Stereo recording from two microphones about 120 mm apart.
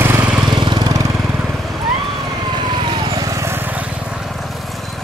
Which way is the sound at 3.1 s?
25° right (ahead or behind).